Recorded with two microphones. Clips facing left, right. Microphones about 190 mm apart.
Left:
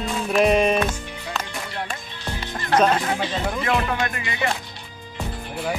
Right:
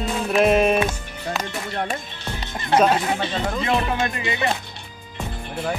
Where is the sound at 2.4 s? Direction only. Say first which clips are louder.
Right 1 dB; 20° right (ahead or behind).